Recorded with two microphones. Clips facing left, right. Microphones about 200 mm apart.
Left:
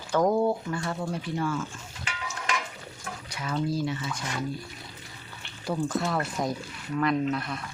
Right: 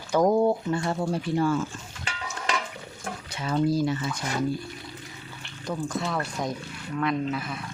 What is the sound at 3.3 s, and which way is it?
Speech, 30° right (ahead or behind).